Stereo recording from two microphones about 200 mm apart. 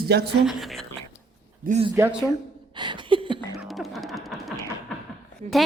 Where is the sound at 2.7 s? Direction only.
25° right (ahead or behind).